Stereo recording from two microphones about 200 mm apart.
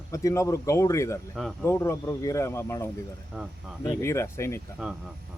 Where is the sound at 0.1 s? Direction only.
15° left (ahead or behind).